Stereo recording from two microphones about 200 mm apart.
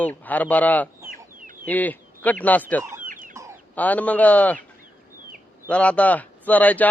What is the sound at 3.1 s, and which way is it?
Chicken, 40° right (ahead or behind).